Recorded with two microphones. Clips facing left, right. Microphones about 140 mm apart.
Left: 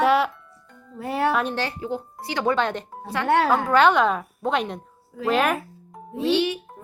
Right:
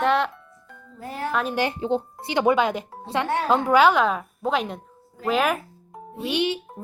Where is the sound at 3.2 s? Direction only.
70° left (ahead or behind).